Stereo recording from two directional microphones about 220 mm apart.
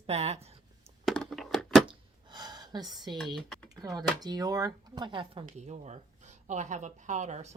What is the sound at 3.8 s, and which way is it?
Speech, 20° right (ahead or behind).